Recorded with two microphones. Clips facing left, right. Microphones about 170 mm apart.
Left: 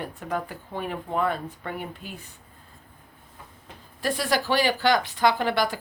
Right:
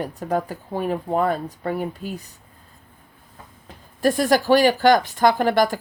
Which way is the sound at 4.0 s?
45° right (ahead or behind).